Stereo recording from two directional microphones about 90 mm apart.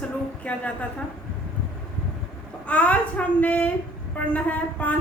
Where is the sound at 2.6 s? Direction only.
15° left (ahead or behind).